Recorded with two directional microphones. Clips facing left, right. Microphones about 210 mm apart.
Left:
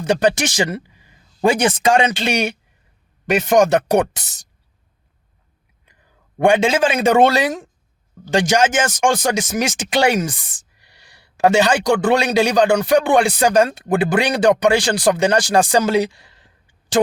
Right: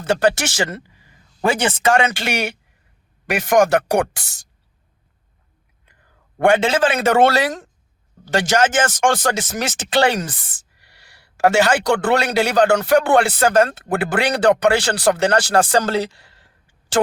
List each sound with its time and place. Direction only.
0.0 s speech: 15° left (ahead or behind)
6.4 s speech: 15° left (ahead or behind)